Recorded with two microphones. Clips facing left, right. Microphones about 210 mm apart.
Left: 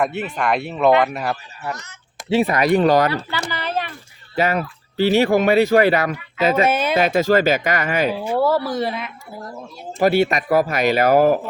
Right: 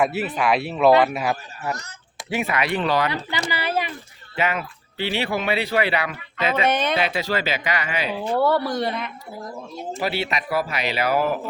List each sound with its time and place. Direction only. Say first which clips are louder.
0.0 s speech: even; 5° right (ahead or behind)
2.3 s speech: left 8 dB; 35° left (ahead or behind)
3.1 s speech: left 2 dB; 15° right (ahead or behind)
4.4 s speech: left 5 dB; 40° left (ahead or behind)
6.7 s speech: left 2 dB; 5° left (ahead or behind)
6.9 s speech: left 7 dB; 45° left (ahead or behind)
8.2 s speech: left 2 dB; 5° left (ahead or behind)
10.0 s speech: left 10 dB; 45° left (ahead or behind)